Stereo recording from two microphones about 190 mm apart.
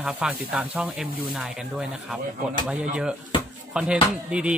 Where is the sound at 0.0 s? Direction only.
5° right (ahead or behind).